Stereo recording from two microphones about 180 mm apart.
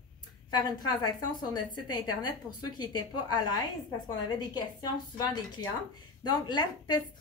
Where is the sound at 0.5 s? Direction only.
25° left (ahead or behind).